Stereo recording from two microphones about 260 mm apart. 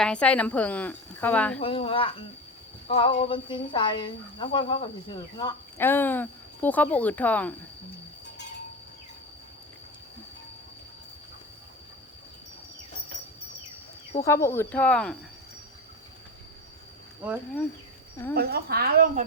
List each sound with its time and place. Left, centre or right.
0.0 s a woman's voice: centre
1.5 s speech: left; by 7.5 s centre
14.2 s speech: centre
18.3 s a woman's voice: right